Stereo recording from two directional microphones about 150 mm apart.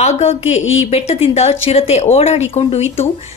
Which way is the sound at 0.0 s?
45° left (ahead or behind).